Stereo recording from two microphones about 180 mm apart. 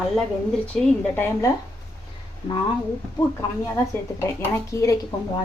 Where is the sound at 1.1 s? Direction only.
10° left (ahead or behind).